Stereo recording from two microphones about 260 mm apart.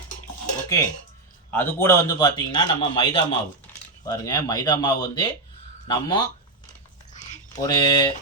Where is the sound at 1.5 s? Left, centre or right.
Centre.